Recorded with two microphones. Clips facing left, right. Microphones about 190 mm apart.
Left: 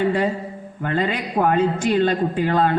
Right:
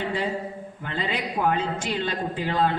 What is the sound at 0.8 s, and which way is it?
A man's voice, 55° left (ahead or behind).